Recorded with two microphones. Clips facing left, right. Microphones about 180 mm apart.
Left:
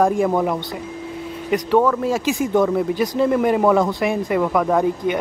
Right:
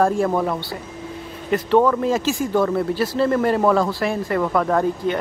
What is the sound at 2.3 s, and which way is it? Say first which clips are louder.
Speech: left 2 dB; 20° left (ahead or behind).